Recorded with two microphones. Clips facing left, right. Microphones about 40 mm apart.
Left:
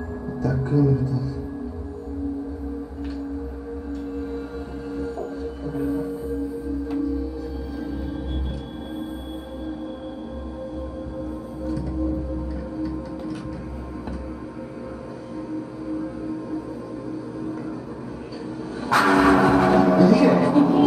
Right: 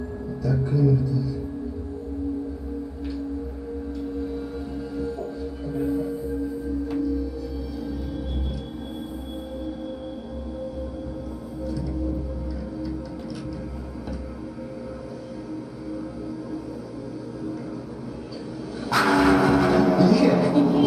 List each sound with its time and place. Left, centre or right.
0.4 s speech: left
4.9 s music: left
5.9 s music: left
11.6 s music: left
15.5 s music: left
18.8 s music: left